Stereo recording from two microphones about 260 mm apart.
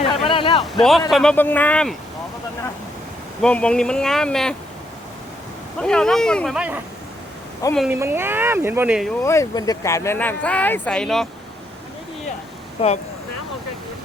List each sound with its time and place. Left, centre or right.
0.3 s a sound: left
0.6 s speech: centre
3.4 s speech: centre
5.8 s speech: centre
7.6 s speech: centre
7.9 s speech: centre
9.2 s speech: centre
12.8 s speech: left